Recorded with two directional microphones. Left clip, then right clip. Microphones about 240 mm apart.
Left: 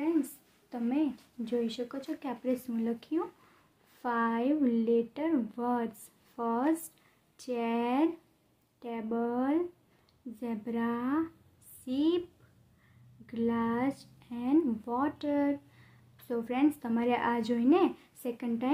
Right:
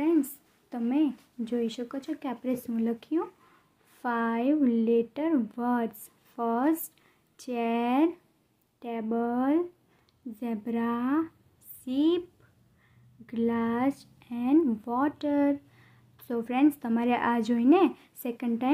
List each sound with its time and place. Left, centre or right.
0.0 s a woman's voice: right
13.3 s speech: right